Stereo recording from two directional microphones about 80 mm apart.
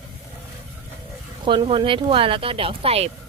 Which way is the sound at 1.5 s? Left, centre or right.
Right.